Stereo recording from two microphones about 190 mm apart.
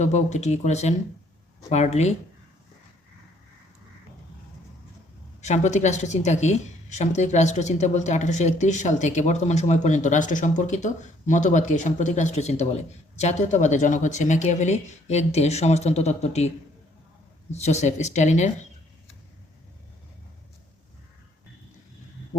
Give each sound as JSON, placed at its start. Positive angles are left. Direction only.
{"t": 0.0, "sound": "a woman's voice", "side_deg": 35}
{"t": 5.4, "sound": "a woman's voice", "side_deg": 40}
{"t": 17.5, "sound": "a woman's voice", "side_deg": 35}